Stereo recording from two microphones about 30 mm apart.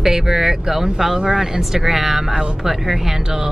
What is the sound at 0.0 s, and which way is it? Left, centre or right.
Speech, centre.